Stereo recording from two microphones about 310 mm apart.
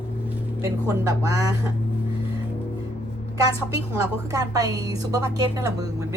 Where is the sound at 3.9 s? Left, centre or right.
Centre.